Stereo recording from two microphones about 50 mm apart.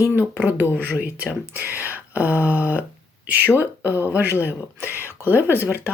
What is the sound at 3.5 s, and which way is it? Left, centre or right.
Speech, left.